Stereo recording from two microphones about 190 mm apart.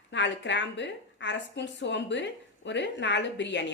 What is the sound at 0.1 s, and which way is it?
Speech, 70° left (ahead or behind).